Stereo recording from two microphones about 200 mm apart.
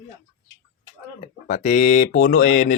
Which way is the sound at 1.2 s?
35° left (ahead or behind).